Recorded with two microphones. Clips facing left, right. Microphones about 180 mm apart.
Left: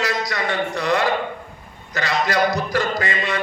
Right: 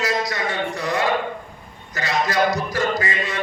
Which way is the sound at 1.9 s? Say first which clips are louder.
Left 1 dB; 65° left (ahead or behind).